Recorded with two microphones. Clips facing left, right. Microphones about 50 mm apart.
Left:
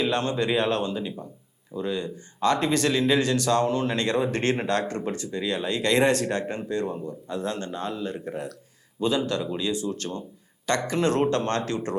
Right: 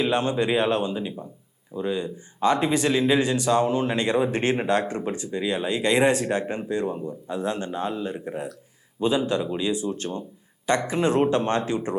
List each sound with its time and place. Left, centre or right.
0.0 s speech: centre